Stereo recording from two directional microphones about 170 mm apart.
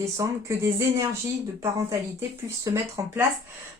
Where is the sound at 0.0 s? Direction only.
15° right (ahead or behind).